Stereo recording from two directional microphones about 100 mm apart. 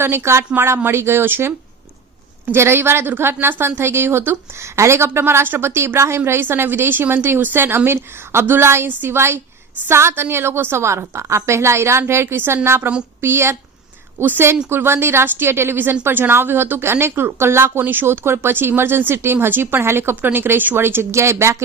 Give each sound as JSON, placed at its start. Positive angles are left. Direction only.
{"t": 0.0, "sound": "a woman's voice", "side_deg": -25}